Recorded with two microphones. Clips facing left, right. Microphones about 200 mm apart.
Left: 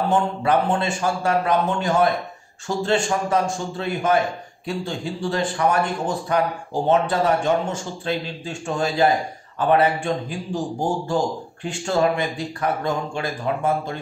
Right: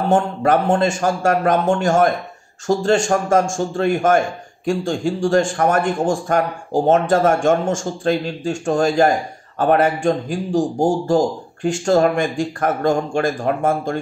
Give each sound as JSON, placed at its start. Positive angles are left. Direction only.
{"t": 0.1, "sound": "speech", "side_deg": -45}